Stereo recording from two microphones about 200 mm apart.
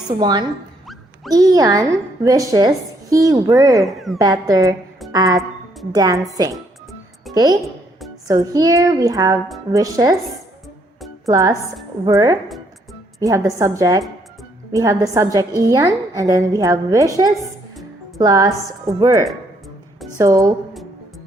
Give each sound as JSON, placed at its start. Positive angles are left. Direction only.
{"t": 0.1, "sound": "a woman's voice", "side_deg": -20}
{"t": 3.8, "sound": "speech", "side_deg": 0}
{"t": 4.2, "sound": "a woman's voice", "side_deg": -20}
{"t": 11.3, "sound": "a woman's voice", "side_deg": -15}
{"t": 12.5, "sound": "music", "side_deg": 0}
{"t": 13.1, "sound": "a woman's voice", "side_deg": -15}
{"t": 18.2, "sound": "a woman's voice", "side_deg": -20}